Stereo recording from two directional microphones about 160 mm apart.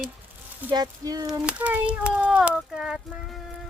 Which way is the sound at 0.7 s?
25° right (ahead or behind).